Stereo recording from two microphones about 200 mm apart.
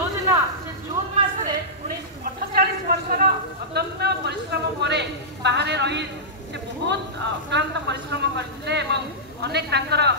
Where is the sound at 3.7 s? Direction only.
55° right (ahead or behind).